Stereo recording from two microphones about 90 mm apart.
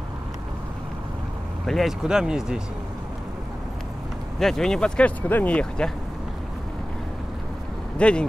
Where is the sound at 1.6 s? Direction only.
Centre (ahead or behind).